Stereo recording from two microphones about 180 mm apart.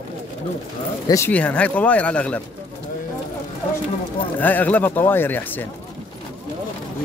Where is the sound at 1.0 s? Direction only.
15° left (ahead or behind).